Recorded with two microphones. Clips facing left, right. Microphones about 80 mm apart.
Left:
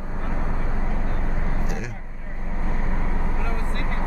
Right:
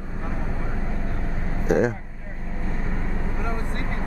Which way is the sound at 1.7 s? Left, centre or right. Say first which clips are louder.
Right 13 dB; right.